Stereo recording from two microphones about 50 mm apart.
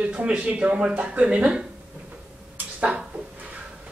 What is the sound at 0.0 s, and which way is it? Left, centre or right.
Speech, right.